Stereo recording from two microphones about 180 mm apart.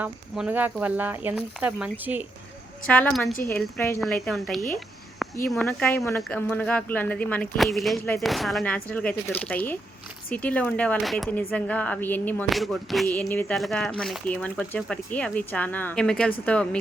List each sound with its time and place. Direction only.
0.0 s speech: 10° right (ahead or behind)
2.8 s speech: 5° left (ahead or behind)
3.8 s speech: 15° left (ahead or behind)
4.0 s speech: centre (ahead or behind)